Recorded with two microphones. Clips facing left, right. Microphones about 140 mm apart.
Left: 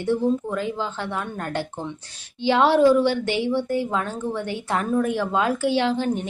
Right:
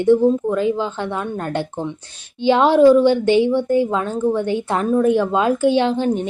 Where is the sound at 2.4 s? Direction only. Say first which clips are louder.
Right 5 dB; 20° right (ahead or behind).